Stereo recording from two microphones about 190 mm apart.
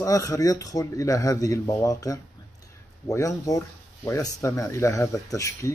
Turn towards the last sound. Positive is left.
turn(degrees=15)  # may be behind; listen again after turning